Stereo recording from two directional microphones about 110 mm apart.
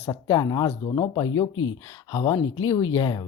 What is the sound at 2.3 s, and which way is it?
Speech, 30° left (ahead or behind).